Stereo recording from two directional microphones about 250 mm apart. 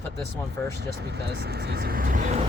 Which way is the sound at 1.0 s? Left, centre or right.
Right.